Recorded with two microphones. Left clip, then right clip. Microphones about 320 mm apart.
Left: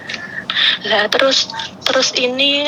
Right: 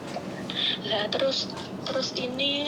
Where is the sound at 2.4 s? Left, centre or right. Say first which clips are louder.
Left 11 dB; left.